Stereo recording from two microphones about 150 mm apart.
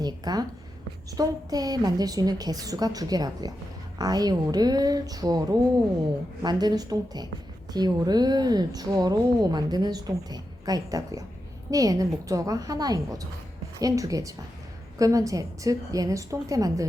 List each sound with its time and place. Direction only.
0.0 s a woman's voice: 25° right (ahead or behind)